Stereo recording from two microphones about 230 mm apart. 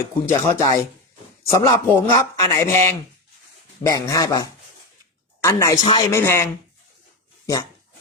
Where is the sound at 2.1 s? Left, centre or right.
Centre.